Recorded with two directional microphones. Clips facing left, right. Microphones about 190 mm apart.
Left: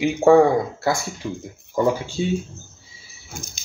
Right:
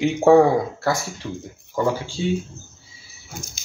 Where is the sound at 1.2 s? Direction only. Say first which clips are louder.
Left 3 dB; 10° left (ahead or behind).